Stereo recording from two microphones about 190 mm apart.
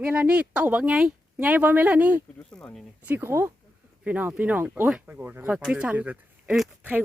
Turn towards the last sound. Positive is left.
turn(degrees=-5)  # may be behind; listen again after turning